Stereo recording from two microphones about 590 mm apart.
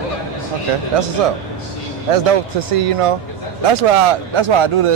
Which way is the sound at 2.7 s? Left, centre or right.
Right.